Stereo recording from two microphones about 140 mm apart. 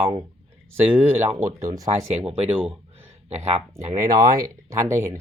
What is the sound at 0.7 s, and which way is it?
Speech, 15° right (ahead or behind).